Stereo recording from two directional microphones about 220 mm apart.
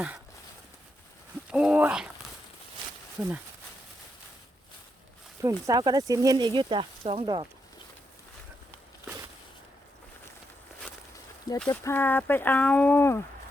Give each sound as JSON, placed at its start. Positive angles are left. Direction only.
{"t": 1.5, "sound": "speech", "side_deg": -5}
{"t": 3.2, "sound": "speech", "side_deg": -10}
{"t": 5.4, "sound": "speech", "side_deg": -15}
{"t": 11.7, "sound": "speech", "side_deg": 15}